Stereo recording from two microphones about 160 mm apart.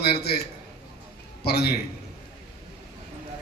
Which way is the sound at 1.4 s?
90° left.